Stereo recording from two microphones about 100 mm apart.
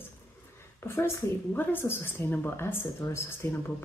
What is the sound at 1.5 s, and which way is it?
Speech, 20° left (ahead or behind).